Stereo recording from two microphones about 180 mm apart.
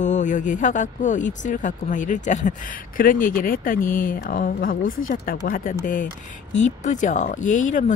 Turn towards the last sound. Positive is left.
turn(degrees=45)  # may be behind; listen again after turning